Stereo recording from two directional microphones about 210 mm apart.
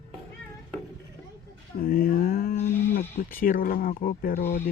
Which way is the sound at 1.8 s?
45° left (ahead or behind).